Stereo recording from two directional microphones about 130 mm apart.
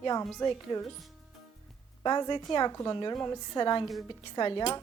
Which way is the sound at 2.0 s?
30° left (ahead or behind).